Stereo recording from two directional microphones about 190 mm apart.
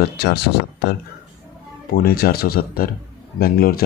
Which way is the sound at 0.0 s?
60° left (ahead or behind).